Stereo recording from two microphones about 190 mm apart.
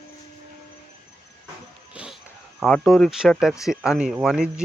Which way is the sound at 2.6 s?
5° left (ahead or behind).